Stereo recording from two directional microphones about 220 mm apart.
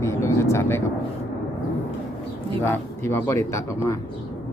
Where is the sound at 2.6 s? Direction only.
10° left (ahead or behind).